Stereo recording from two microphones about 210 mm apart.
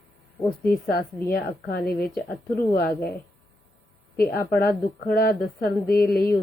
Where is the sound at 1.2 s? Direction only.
45° left (ahead or behind).